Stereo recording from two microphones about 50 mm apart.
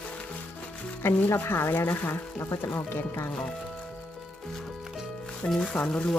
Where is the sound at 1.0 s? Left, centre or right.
Left.